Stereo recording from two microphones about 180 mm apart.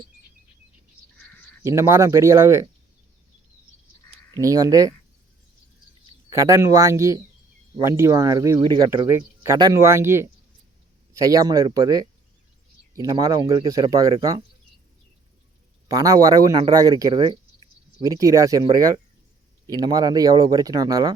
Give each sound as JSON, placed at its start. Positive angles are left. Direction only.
{"t": 1.6, "sound": "speech", "side_deg": -15}
{"t": 4.4, "sound": "a man's voice", "side_deg": -20}
{"t": 6.3, "sound": "a man's voice", "side_deg": -20}
{"t": 15.9, "sound": "a man's voice", "side_deg": -20}